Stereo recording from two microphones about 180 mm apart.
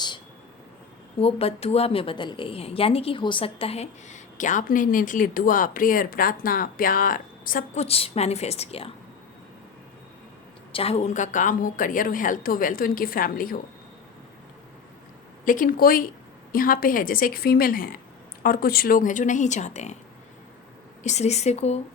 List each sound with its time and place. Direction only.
1.2 s a woman's voice: 35° left (ahead or behind)
10.7 s a woman's voice: 30° left (ahead or behind); by 13.6 s 55° left (ahead or behind)
15.4 s a woman's voice: 50° left (ahead or behind)
21.0 s a woman's voice: 40° left (ahead or behind)